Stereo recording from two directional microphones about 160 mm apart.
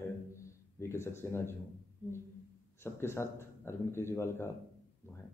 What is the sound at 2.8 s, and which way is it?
A man's voice, 15° left (ahead or behind).